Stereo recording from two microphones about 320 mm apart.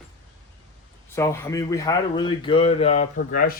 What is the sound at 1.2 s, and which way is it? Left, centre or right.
Speech, centre.